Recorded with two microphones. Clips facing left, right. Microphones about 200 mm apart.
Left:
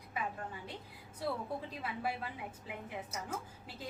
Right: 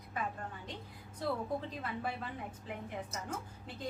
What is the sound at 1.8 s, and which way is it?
A woman's voice, 10° left (ahead or behind).